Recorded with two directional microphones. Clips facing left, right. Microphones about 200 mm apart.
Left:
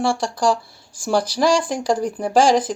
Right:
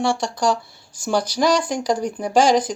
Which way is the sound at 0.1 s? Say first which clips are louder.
Left 1 dB; 30° left (ahead or behind).